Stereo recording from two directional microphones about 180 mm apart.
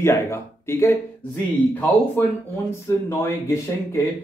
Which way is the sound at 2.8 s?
15° left (ahead or behind).